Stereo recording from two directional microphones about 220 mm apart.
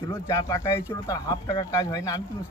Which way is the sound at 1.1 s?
20° left (ahead or behind).